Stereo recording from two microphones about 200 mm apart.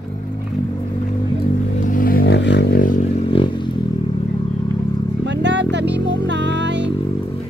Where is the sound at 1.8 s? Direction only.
45° left (ahead or behind); by 2.8 s 60° left (ahead or behind).